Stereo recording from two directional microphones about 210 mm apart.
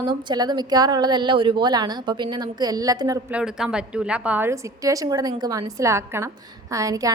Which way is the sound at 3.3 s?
5° right (ahead or behind).